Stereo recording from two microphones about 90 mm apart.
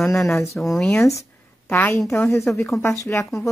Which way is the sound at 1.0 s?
30° left (ahead or behind).